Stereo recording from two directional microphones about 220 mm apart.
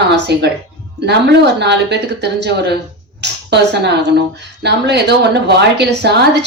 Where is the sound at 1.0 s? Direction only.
50° right (ahead or behind).